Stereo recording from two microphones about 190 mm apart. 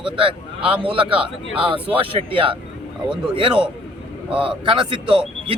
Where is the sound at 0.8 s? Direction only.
25° right (ahead or behind).